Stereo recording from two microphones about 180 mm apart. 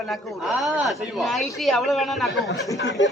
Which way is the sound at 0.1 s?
Centre (ahead or behind).